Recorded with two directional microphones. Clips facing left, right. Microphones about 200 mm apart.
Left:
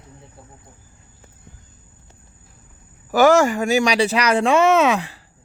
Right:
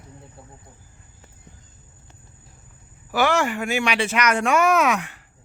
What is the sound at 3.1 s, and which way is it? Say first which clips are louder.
Speech: left 7 dB; 45° left (ahead or behind).